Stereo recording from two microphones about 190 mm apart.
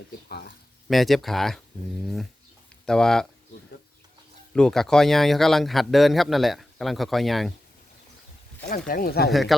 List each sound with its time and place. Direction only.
0.9 s speech: centre (ahead or behind)
2.8 s speech: 5° left (ahead or behind)
4.5 s speech: 5° left (ahead or behind)
8.6 s speech: 50° left (ahead or behind)
9.3 s speech: centre (ahead or behind)